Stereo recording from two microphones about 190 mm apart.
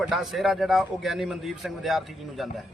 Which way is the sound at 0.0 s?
Centre (ahead or behind).